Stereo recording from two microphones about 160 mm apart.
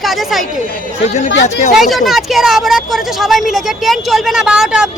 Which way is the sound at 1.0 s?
45° left (ahead or behind).